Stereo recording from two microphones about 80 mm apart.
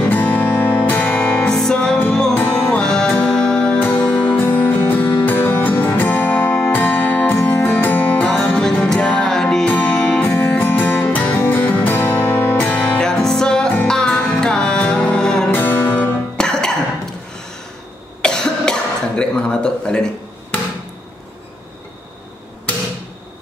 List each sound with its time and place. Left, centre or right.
0.0 s music: left
4.4 s music: left
10.3 s music: left
12.7 s music: centre
15.5 s music: left
16.3 s music: centre
18.2 s cough: centre